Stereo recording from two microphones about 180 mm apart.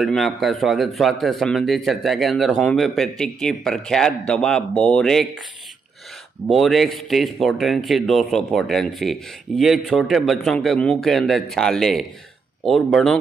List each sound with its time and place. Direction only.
0.0 s speech: centre (ahead or behind)
6.4 s speech: centre (ahead or behind)